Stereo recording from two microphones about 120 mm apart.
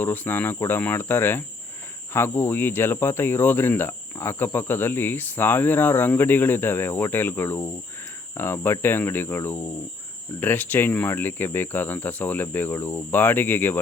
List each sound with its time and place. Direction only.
0.0 s speech: 15° left (ahead or behind)
8.4 s cricket: 20° left (ahead or behind)
10.4 s speech: 15° left (ahead or behind)